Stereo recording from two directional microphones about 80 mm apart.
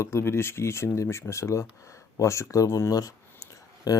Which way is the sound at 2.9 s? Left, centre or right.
Left.